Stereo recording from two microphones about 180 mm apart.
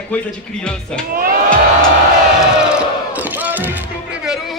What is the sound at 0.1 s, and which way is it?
Speech, 10° left (ahead or behind).